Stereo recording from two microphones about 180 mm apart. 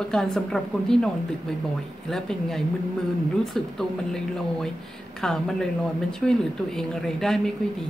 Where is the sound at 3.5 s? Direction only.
Centre (ahead or behind).